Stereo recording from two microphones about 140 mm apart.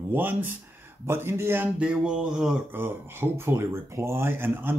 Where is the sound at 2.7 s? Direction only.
15° right (ahead or behind).